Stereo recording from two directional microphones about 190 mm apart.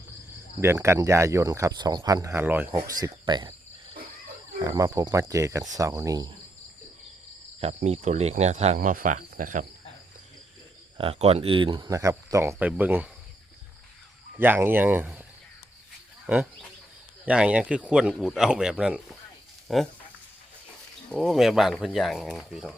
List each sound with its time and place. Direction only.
0.6 s speech: 15° right (ahead or behind)
4.6 s cricket: 20° right (ahead or behind)
7.6 s speech: 35° right (ahead or behind)
10.9 s speech: 30° right (ahead or behind); by 13.1 s 10° right (ahead or behind)
14.3 s speech: 10° right (ahead or behind)
16.2 s speech: 5° right (ahead or behind)
21.1 s speech: centre (ahead or behind)